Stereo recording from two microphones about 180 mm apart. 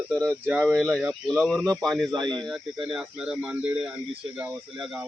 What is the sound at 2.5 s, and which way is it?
Speech, centre (ahead or behind).